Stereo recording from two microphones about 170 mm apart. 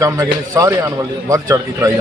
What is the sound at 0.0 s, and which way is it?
A man's voice, 20° right (ahead or behind).